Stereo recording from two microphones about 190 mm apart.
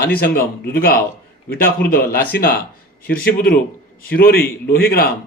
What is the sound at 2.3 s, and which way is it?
Speech, 55° left (ahead or behind).